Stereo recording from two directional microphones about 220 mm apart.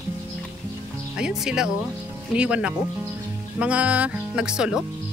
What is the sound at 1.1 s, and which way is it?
Speech, 5° right (ahead or behind).